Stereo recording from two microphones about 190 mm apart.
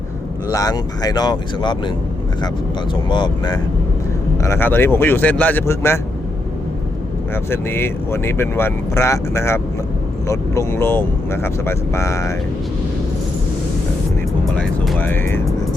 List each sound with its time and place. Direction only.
0.5 s speech: 20° left (ahead or behind)
2.9 s speech: 25° left (ahead or behind)
4.4 s speech: 10° left (ahead or behind)
7.5 s speech: 10° left (ahead or behind)
14.5 s speech: 5° left (ahead or behind)